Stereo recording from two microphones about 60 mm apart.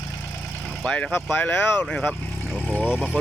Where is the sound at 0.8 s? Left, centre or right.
Centre.